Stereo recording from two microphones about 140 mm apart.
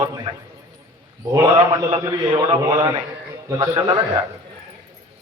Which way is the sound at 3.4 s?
25° right (ahead or behind).